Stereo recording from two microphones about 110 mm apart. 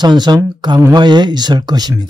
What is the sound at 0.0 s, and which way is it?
Speech, 40° right (ahead or behind).